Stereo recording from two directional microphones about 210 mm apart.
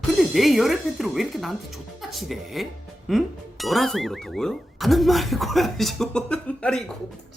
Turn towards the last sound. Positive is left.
turn(degrees=5)  # may be behind; listen again after turning